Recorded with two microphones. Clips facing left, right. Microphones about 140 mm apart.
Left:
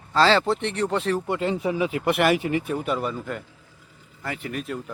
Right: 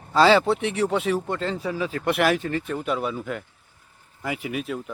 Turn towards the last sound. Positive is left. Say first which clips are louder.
# right 2 dB
turn(degrees=-5)  # may be behind; listen again after turning